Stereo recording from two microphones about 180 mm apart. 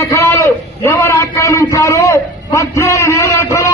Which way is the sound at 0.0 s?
15° left (ahead or behind).